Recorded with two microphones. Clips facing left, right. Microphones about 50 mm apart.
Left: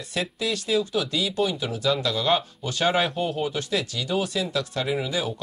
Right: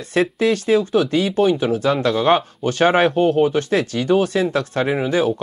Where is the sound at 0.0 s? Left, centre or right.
Right.